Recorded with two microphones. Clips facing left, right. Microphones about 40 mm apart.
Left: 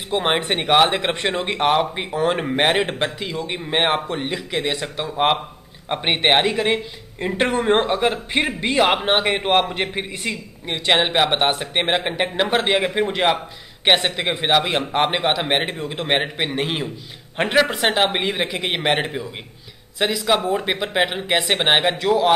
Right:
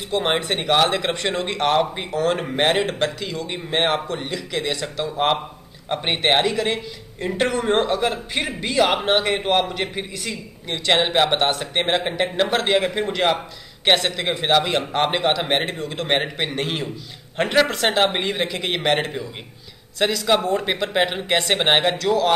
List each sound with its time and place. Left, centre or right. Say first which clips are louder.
0.1 s a man's voice: left 1 dB; centre
10.9 s a man's voice: even; centre
21.9 s speech: left 2 dB; centre